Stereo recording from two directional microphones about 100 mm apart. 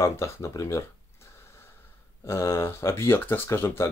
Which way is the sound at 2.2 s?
25° left (ahead or behind).